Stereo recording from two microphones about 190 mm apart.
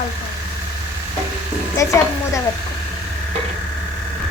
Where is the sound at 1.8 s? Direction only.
15° left (ahead or behind).